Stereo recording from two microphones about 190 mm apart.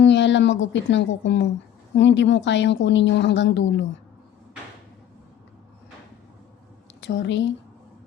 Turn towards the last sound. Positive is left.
turn(degrees=70)  # may be behind; listen again after turning